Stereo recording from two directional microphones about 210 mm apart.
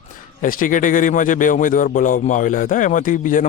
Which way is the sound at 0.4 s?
40° left (ahead or behind).